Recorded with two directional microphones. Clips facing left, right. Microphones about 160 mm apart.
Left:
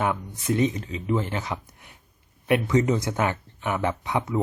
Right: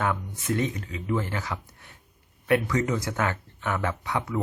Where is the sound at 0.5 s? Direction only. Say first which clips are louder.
Left 4 dB; 20° left (ahead or behind).